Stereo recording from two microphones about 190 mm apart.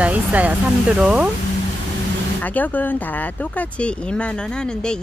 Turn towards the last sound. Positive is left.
turn(degrees=5)  # may be behind; listen again after turning